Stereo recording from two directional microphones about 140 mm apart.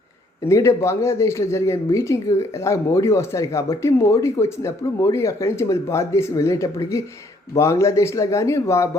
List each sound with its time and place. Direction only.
0.4 s speech: 20° left (ahead or behind)